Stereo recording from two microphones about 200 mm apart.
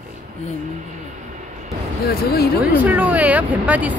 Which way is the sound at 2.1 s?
50° left (ahead or behind).